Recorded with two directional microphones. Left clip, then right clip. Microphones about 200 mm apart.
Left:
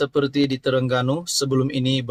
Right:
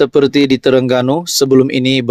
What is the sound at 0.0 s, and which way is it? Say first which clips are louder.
Speech: right 10 dB; 35° right (ahead or behind).